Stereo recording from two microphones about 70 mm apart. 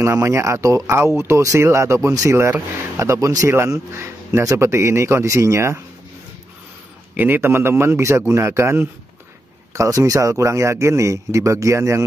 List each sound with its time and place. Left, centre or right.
0.0 s a man's voice: right
7.2 s a man's voice: right
9.8 s speech: right